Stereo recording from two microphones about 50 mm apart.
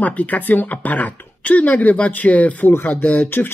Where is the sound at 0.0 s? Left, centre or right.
Left.